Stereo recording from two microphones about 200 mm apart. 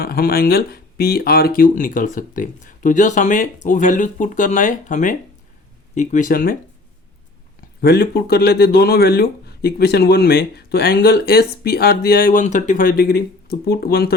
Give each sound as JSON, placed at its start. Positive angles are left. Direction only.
{"t": 0.0, "sound": "speech", "side_deg": 50}
{"t": 7.8, "sound": "speech", "side_deg": 55}